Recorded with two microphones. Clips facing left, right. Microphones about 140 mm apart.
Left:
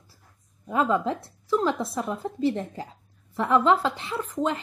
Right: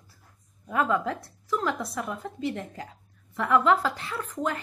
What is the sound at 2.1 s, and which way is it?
Speech, 30° left (ahead or behind).